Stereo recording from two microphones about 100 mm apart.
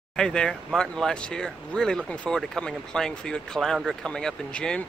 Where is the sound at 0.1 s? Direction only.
5° left (ahead or behind).